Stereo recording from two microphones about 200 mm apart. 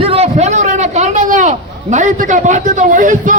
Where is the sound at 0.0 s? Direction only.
30° right (ahead or behind).